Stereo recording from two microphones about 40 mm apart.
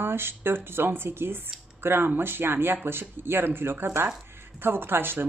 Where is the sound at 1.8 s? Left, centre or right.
Right.